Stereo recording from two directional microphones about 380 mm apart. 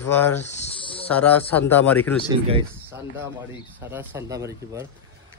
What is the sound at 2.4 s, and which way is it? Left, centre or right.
Speech, centre.